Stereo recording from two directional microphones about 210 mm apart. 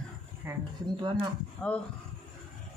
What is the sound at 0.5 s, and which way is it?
Speech, 10° right (ahead or behind).